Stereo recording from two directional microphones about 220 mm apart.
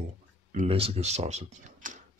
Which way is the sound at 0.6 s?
25° right (ahead or behind).